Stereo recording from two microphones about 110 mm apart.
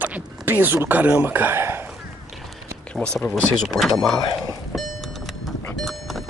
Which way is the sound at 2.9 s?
5° left (ahead or behind).